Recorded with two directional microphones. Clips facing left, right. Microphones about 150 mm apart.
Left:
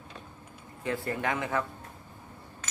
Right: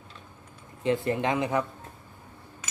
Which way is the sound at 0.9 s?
20° right (ahead or behind).